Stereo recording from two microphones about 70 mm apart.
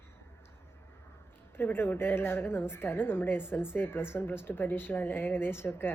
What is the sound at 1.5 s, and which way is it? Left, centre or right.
A woman's voice, left.